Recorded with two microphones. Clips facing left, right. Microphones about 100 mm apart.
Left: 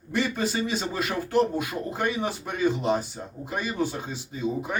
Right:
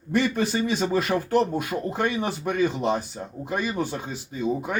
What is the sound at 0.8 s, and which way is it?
A man's voice, 45° right (ahead or behind).